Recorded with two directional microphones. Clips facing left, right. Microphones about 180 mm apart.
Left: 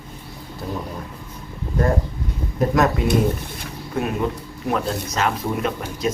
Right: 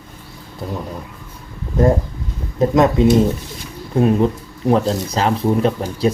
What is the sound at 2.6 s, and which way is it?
Speech, 25° right (ahead or behind).